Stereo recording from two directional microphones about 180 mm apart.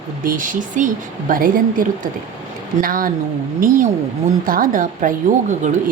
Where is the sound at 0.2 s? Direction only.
50° right (ahead or behind).